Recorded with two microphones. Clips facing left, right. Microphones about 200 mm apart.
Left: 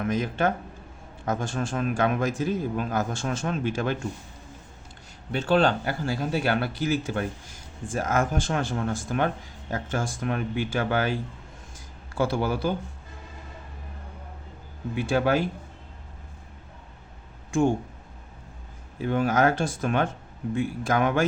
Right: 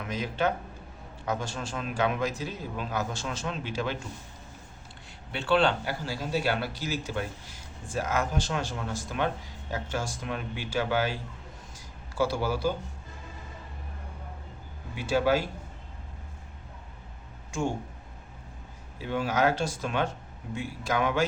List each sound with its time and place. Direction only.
0.0 s a man's voice: 50° left (ahead or behind)
5.3 s a man's voice: 40° left (ahead or behind)
14.9 s speech: 55° left (ahead or behind)
19.0 s a man's voice: 50° left (ahead or behind)